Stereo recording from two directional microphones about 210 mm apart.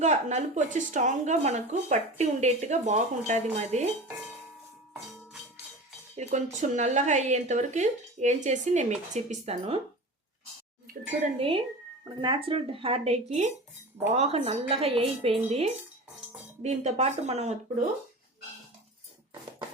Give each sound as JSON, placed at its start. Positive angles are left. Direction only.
{"t": 0.0, "sound": "speech", "side_deg": -35}
{"t": 6.1, "sound": "speech", "side_deg": -35}
{"t": 11.3, "sound": "speech", "side_deg": -25}